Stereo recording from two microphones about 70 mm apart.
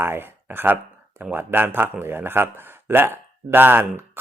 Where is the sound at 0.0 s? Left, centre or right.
Right.